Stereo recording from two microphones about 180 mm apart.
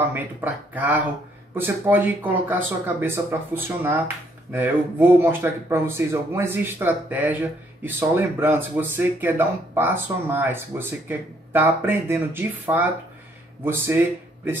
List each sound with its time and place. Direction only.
0.0 s speech: 10° right (ahead or behind)